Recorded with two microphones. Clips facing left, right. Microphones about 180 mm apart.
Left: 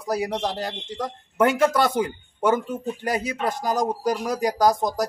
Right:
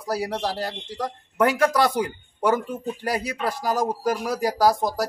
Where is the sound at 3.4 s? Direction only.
20° left (ahead or behind).